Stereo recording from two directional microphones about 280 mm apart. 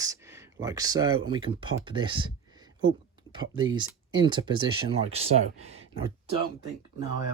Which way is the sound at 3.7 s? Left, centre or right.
Centre.